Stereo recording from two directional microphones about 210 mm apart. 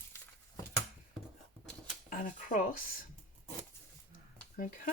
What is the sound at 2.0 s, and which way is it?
Speech, 40° left (ahead or behind).